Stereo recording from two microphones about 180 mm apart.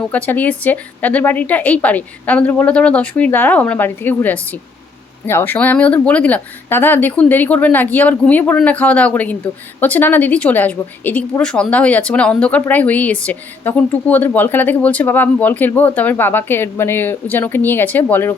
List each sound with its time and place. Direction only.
0.0 s a woman's voice: 10° left (ahead or behind)